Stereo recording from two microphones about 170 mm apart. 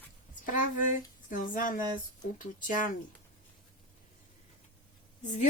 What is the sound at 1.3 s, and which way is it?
Speech, 50° left (ahead or behind).